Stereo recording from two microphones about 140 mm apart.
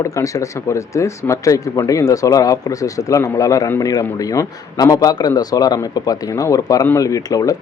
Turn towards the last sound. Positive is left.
turn(degrees=25)  # may be behind; listen again after turning